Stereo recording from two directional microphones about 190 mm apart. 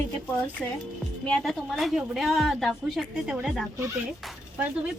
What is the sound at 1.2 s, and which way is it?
A woman's voice, 5° left (ahead or behind).